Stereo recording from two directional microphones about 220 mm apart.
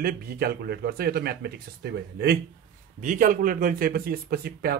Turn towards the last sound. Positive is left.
turn(degrees=-45)  # may be behind; listen again after turning